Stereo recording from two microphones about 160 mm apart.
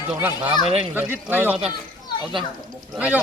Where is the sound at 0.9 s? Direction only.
15° right (ahead or behind).